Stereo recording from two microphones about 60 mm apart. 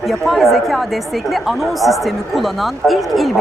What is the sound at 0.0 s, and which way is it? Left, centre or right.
Speech, centre.